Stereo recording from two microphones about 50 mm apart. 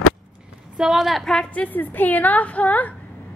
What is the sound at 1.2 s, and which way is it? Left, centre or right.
Speech, centre.